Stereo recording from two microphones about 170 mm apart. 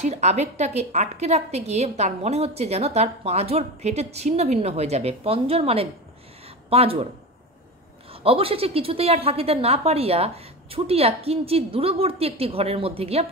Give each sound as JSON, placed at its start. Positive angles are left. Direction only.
{"t": 0.0, "sound": "a woman's voice", "side_deg": -40}
{"t": 8.1, "sound": "a woman's voice", "side_deg": -35}